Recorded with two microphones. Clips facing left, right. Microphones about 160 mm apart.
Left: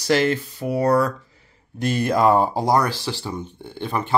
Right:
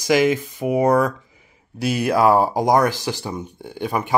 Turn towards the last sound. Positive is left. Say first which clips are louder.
# right 2 dB
turn(degrees=-10)  # may be behind; listen again after turning